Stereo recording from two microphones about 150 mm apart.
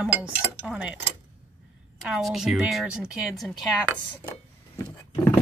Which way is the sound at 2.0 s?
Centre (ahead or behind).